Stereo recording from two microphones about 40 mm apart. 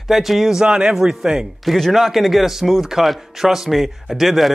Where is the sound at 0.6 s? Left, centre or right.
Centre.